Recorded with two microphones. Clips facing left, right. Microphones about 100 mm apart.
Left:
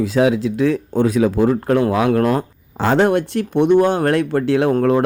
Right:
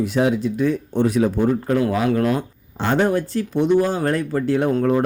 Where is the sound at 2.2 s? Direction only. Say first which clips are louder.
Left 3 dB; 40° left (ahead or behind).